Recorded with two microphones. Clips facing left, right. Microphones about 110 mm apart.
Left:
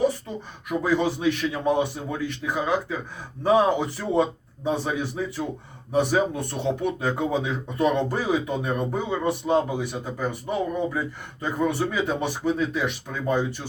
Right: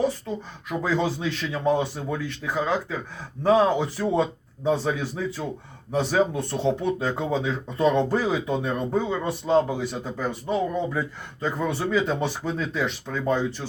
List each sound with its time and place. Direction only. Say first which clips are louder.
0.7 s speech: left 2 dB; 15° left (ahead or behind)